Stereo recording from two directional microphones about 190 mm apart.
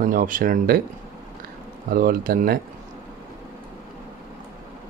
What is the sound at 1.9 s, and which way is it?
Speech, 50° right (ahead or behind).